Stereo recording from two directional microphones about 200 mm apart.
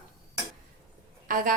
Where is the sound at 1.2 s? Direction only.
40° right (ahead or behind).